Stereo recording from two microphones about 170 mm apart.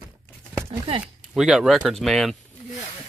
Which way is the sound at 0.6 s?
30° right (ahead or behind).